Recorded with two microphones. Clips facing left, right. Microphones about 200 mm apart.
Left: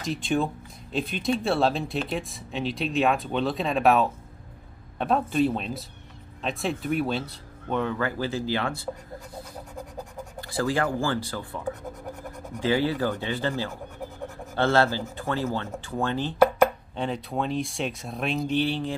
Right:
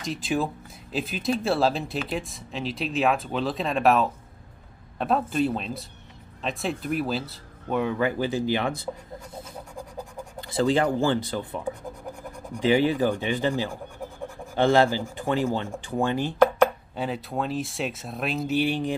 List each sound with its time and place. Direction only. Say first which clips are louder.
0.0 s speech: left 1 dB; centre (ahead or behind)